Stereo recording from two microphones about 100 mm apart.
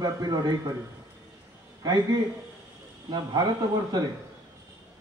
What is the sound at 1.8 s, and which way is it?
A man's voice, 40° right (ahead or behind).